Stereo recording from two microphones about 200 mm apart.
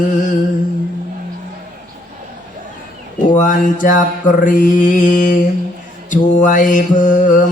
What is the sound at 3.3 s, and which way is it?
Mantra, 40° left (ahead or behind).